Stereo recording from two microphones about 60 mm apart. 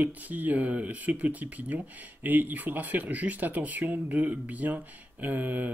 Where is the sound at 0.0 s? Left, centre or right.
Right.